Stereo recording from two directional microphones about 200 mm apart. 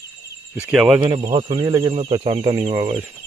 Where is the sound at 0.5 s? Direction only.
5° right (ahead or behind).